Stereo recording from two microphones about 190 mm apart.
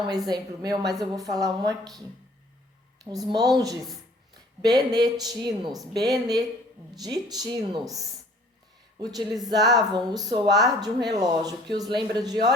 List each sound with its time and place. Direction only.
0.3 s speech: 20° right (ahead or behind)
3.0 s speech: 20° right (ahead or behind)
4.6 s speech: 20° right (ahead or behind)